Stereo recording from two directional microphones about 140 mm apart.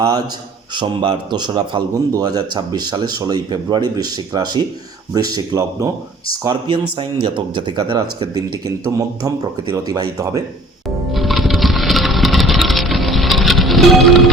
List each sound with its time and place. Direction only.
0.0 s a man's voice: 25° right (ahead or behind)
10.8 s music: centre (ahead or behind)